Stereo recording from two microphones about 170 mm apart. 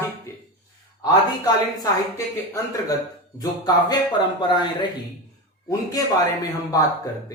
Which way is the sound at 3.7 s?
25° left (ahead or behind).